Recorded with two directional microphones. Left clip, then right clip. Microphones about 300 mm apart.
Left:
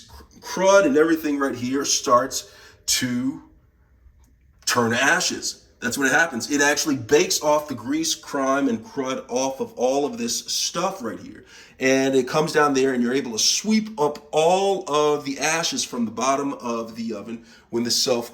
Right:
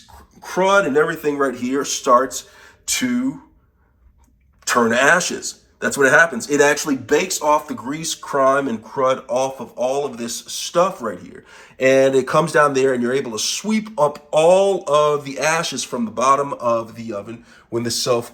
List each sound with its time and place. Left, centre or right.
0.4 s speech: centre
4.6 s speech: centre